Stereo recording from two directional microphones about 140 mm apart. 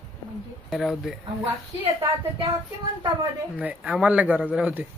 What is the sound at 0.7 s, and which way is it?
Speech, centre (ahead or behind).